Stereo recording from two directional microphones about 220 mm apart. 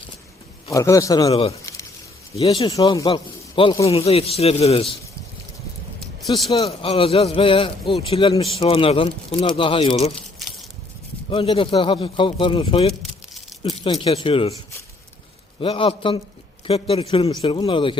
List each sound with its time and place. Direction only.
0.7 s a man's voice: 15° left (ahead or behind)
1.3 s speech: 25° left (ahead or behind)
6.5 s speech: 25° left (ahead or behind)
11.3 s speech: 25° left (ahead or behind)
15.6 s speech: 25° left (ahead or behind)